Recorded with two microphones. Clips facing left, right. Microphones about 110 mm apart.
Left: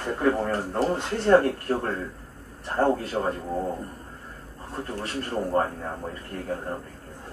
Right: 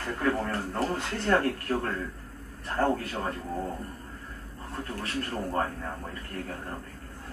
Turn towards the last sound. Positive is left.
turn(degrees=20)  # may be behind; listen again after turning